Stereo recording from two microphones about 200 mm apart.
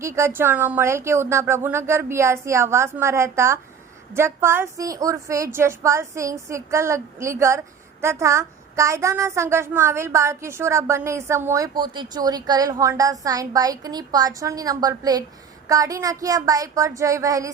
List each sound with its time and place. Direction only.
0.0 s a woman's voice: 15° right (ahead or behind)